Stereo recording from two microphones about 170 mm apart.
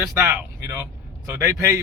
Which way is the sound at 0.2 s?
15° right (ahead or behind).